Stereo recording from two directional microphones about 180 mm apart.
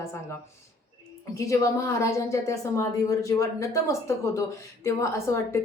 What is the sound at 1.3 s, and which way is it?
A woman's voice, 20° left (ahead or behind).